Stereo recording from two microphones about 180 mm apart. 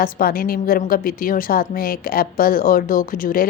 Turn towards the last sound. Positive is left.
turn(degrees=50)  # may be behind; listen again after turning